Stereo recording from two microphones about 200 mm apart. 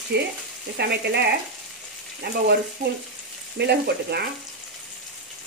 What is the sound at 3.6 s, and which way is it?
Speech, 55° right (ahead or behind).